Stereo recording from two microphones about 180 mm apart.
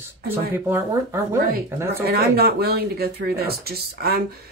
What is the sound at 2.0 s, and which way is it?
Speech, 60° right (ahead or behind).